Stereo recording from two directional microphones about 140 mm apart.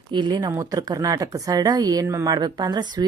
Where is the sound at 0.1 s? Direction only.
30° right (ahead or behind).